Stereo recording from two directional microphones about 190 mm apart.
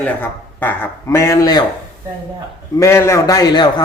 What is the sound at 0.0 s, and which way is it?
Speech, 10° left (ahead or behind).